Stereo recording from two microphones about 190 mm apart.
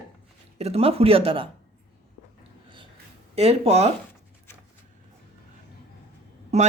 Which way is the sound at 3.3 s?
30° right (ahead or behind).